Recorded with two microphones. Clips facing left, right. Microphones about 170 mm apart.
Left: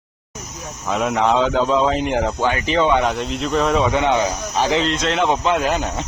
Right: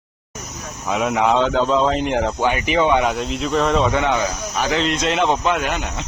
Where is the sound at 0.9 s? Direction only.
Centre (ahead or behind).